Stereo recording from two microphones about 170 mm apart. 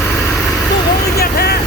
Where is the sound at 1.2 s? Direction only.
65° left (ahead or behind).